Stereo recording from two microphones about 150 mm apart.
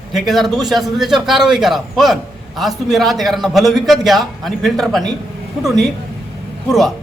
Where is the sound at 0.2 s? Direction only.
Centre (ahead or behind).